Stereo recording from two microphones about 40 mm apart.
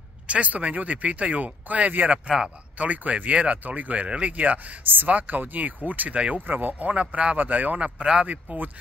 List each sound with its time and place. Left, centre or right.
0.3 s speech: right
2.0 s speech: centre
2.8 s speech: right
4.8 s speech: right
5.1 s speech: right
6.3 s speech: right
6.9 s speech: right
7.3 s speech: right
8.0 s speech: right
8.5 s speech: right